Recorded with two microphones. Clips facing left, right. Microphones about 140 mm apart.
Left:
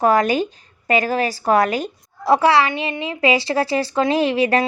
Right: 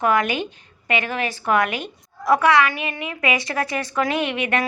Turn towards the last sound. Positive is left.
turn(degrees=35)  # may be behind; listen again after turning